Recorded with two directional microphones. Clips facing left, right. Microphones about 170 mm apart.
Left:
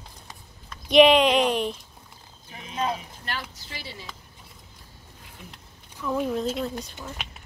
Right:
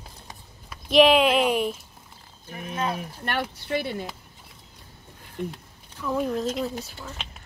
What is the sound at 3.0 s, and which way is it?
Speech, 55° right (ahead or behind).